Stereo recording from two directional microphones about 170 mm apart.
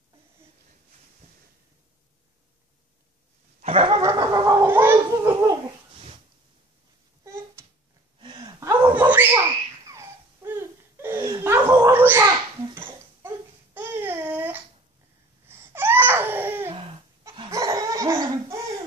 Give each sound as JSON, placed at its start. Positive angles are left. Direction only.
{"t": 3.6, "sound": "chuckle", "side_deg": -35}
{"t": 4.0, "sound": "laughter", "side_deg": -20}
{"t": 7.6, "sound": "a sound", "side_deg": -15}
{"t": 8.2, "sound": "laughter", "side_deg": -25}
{"t": 12.7, "sound": "babbling", "side_deg": -15}
{"t": 17.5, "sound": "laughter", "side_deg": -20}